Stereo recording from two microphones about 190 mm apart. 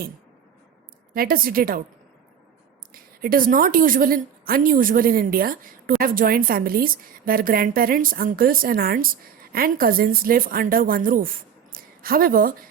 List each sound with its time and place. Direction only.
1.1 s a woman's voice: 50° right (ahead or behind)
2.9 s a woman's voice: 50° right (ahead or behind)
11.7 s a sound: 50° right (ahead or behind)